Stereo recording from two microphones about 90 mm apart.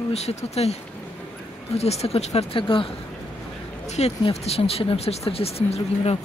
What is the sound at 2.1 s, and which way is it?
Speech, 75° left (ahead or behind).